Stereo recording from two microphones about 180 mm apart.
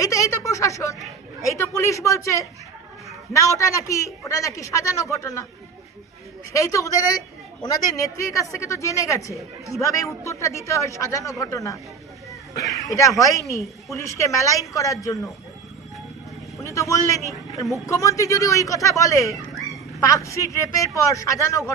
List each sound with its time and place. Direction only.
0.0 s a sound: 20° left (ahead or behind)
1.4 s a woman's voice: 15° left (ahead or behind)
6.5 s a woman's voice: 15° left (ahead or behind)
16.6 s a woman's voice: 15° left (ahead or behind)
19.3 s dog: centre (ahead or behind)
20.0 s a woman's voice: 20° left (ahead or behind)